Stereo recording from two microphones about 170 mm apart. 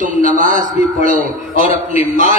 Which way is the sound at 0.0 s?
50° right (ahead or behind).